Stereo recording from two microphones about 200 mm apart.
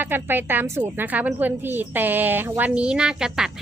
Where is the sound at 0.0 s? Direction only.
10° right (ahead or behind).